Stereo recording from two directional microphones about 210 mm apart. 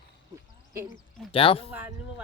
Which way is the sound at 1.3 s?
25° left (ahead or behind).